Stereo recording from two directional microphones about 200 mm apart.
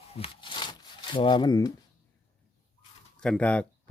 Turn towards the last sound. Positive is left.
turn(degrees=5)  # may be behind; listen again after turning